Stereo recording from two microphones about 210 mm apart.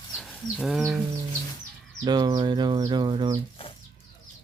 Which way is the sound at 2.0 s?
20° right (ahead or behind).